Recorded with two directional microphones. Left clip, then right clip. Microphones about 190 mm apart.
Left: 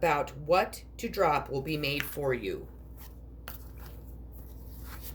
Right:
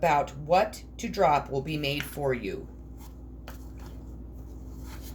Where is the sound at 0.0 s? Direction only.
50° left (ahead or behind).